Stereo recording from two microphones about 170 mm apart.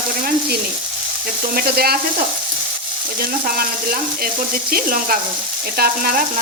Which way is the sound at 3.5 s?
60° right (ahead or behind).